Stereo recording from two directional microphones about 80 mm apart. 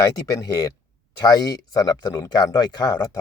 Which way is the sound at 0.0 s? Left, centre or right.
Left.